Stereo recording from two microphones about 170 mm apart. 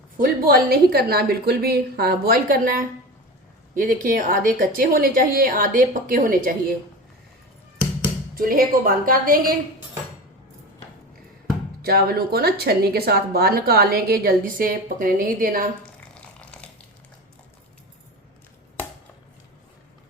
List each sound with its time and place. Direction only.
0.2 s a woman's voice: 60° right (ahead or behind)
8.4 s a woman's voice: 55° right (ahead or behind)
11.8 s a woman's voice: 65° right (ahead or behind)
16.2 s a sound: 5° left (ahead or behind)